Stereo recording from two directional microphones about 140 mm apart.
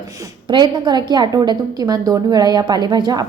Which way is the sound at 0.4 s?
30° right (ahead or behind).